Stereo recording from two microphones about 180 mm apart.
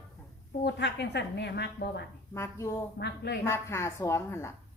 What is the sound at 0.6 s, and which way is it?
A woman's voice, 75° left (ahead or behind).